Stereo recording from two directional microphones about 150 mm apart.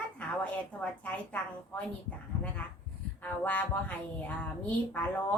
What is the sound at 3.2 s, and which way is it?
Speech, 10° left (ahead or behind).